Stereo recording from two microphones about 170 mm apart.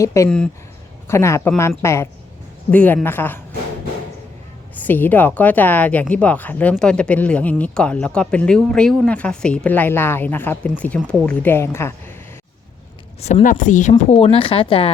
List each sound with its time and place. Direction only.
0.0 s speech: 20° left (ahead or behind)
0.3 s speech: 5° left (ahead or behind)
1.0 s speech: 15° left (ahead or behind)
4.8 s speech: 10° left (ahead or behind)
13.2 s speech: 45° left (ahead or behind)
14.1 s speech: 35° left (ahead or behind)